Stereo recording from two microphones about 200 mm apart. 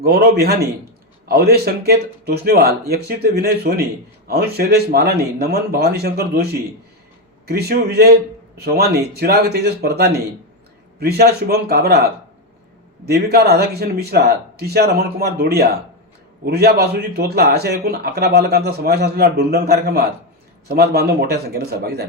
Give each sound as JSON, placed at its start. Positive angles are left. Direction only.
{"t": 0.0, "sound": "a man's voice", "side_deg": -50}
{"t": 13.1, "sound": "a man's voice", "side_deg": -50}